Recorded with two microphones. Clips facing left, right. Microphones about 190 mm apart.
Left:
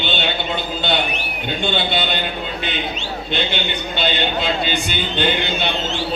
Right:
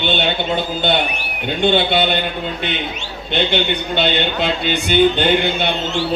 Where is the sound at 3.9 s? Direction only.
60° right (ahead or behind).